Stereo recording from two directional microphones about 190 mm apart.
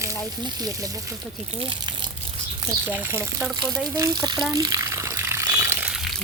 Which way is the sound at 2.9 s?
10° right (ahead or behind).